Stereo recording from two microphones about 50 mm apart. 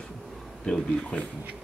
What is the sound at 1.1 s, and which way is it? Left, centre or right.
Speech, left.